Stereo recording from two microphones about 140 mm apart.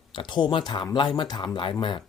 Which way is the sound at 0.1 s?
35° left (ahead or behind).